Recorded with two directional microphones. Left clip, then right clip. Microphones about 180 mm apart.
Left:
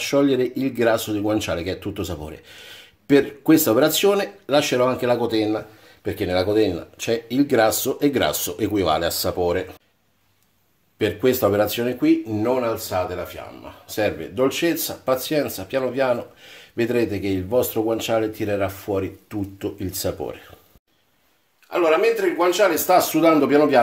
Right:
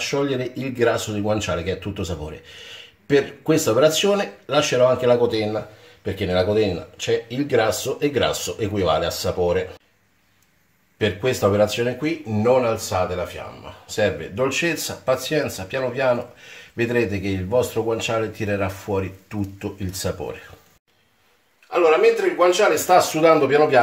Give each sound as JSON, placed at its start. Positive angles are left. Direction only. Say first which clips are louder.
{"t": 0.0, "sound": "speech", "louder": "left 4 dB", "side_deg": 45}
{"t": 11.0, "sound": "speech", "louder": "left 1 dB", "side_deg": 45}
{"t": 13.8, "sound": "speech", "louder": "right 2 dB", "side_deg": 45}
{"t": 21.6, "sound": "speech", "louder": "right 2 dB", "side_deg": 45}